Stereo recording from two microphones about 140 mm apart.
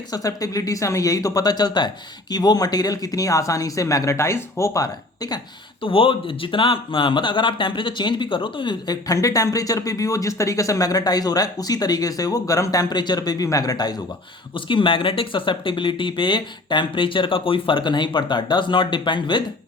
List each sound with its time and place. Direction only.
0.1 s speech: 25° left (ahead or behind)
5.8 s speech: 40° left (ahead or behind)